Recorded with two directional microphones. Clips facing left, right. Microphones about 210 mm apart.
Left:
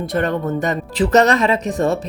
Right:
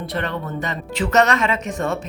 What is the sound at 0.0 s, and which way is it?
Speech, 45° left (ahead or behind).